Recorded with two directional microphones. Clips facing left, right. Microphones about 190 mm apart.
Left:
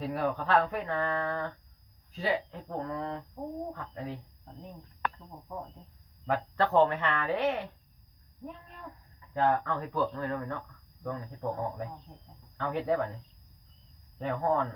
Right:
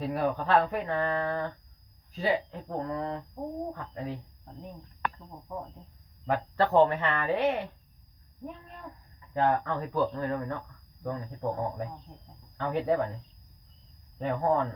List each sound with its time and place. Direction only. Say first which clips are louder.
0.0 s speech: right 2 dB; 15° right (ahead or behind)
9.3 s speech: right 1 dB; 15° right (ahead or behind)
14.2 s speech: right 2 dB; 15° right (ahead or behind)